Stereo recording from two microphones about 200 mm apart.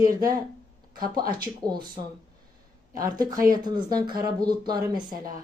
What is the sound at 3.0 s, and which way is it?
Speech, 20° right (ahead or behind).